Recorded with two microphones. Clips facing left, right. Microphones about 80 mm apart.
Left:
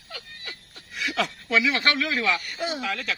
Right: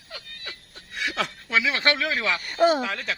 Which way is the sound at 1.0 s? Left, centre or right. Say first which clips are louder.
Left 1 dB; right.